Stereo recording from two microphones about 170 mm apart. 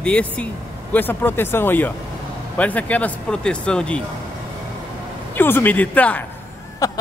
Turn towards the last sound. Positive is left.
turn(degrees=20)  # may be behind; listen again after turning